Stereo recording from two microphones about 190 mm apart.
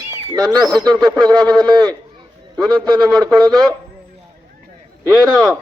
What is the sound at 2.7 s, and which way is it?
Speech, 5° left (ahead or behind).